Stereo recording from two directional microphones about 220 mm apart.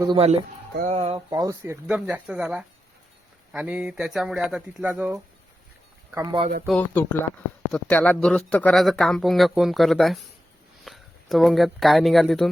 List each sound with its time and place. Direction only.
0.1 s speech: 25° right (ahead or behind)
1.3 s speech: 15° right (ahead or behind)
6.7 s speech: 5° left (ahead or behind)